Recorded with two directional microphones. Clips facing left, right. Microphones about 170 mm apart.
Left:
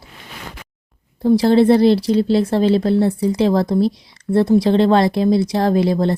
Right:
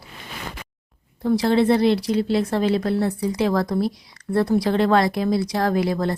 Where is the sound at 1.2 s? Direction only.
35° left (ahead or behind).